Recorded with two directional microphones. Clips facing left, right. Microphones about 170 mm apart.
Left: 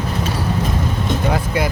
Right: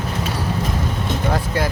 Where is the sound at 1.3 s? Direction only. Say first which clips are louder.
Even; 10° left (ahead or behind).